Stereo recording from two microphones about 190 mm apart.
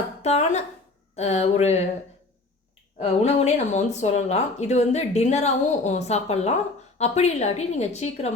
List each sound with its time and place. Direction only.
0.2 s speech: 35° left (ahead or behind)
3.0 s speech: 35° left (ahead or behind)